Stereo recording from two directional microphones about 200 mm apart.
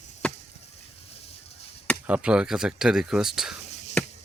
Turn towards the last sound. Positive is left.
turn(degrees=5)  # may be behind; listen again after turning